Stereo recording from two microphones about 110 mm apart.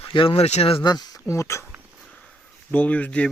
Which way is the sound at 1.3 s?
25° left (ahead or behind).